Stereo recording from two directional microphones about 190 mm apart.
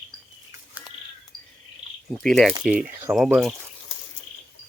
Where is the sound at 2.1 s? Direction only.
Centre (ahead or behind).